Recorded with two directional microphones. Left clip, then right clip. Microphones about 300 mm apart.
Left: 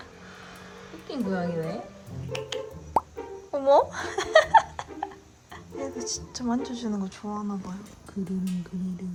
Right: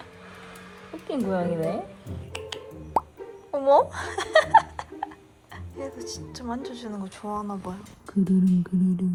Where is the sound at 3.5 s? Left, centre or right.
Centre.